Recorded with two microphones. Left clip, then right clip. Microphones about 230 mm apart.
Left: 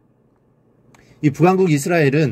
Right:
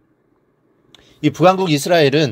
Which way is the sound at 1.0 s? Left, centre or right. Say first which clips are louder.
Right 3 dB; centre.